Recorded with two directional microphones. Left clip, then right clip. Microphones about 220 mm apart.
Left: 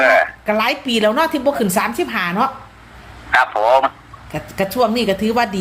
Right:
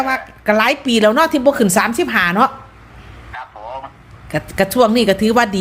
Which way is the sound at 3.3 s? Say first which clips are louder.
Left 17 dB; 45° left (ahead or behind).